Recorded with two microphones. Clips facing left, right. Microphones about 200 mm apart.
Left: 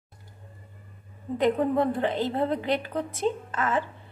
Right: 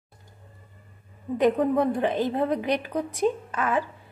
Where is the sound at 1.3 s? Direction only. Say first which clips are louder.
Right 2 dB; 15° right (ahead or behind).